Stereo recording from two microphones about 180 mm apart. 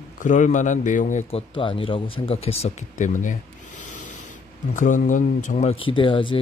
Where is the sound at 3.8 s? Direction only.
45° left (ahead or behind).